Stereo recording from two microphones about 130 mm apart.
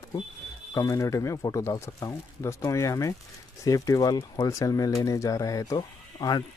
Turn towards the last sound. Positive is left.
turn(degrees=30)  # may be behind; listen again after turning